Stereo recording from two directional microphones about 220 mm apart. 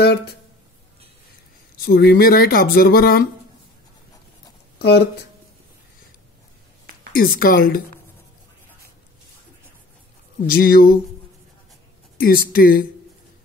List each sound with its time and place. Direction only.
1.9 s speech: 45° left (ahead or behind)
4.7 s speech: 50° left (ahead or behind)
7.1 s a woman's voice: 40° left (ahead or behind)
10.4 s a woman's voice: 40° left (ahead or behind)
12.2 s a woman's voice: 40° left (ahead or behind)